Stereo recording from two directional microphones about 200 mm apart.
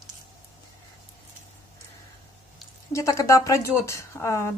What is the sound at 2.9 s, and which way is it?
A woman's voice, 15° left (ahead or behind).